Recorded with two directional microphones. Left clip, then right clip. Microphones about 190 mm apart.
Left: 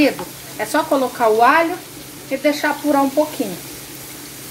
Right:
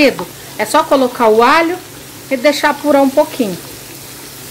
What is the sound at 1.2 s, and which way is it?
Sizzle, 45° right (ahead or behind).